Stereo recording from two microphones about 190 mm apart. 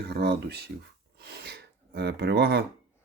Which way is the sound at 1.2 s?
60° right (ahead or behind).